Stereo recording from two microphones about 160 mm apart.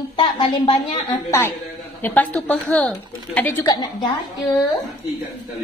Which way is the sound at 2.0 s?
10° left (ahead or behind).